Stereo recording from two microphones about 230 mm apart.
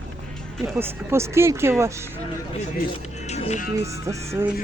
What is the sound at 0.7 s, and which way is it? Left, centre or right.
Speech, centre.